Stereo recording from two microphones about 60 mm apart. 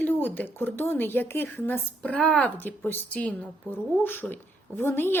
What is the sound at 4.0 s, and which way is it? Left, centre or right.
A woman's voice, left.